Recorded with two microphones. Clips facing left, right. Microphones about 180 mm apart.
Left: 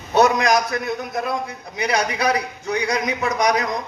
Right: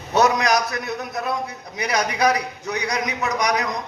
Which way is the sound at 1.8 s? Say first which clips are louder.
Even; 30° left (ahead or behind).